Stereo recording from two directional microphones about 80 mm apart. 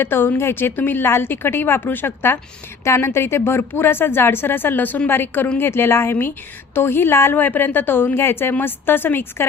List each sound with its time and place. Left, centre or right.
0.0 s a woman's voice: left